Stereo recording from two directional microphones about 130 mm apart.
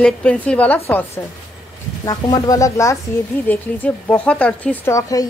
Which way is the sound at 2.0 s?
30° left (ahead or behind).